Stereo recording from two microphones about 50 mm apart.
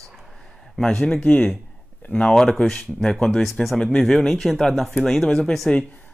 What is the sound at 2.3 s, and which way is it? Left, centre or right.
Speech, centre.